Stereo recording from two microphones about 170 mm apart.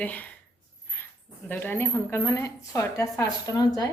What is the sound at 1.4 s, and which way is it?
A woman's voice, 10° left (ahead or behind).